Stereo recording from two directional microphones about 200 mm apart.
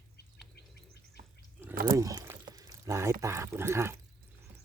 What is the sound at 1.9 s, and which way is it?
Pour, 15° right (ahead or behind).